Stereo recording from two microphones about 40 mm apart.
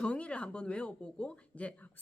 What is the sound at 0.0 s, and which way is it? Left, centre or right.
A woman's voice, left.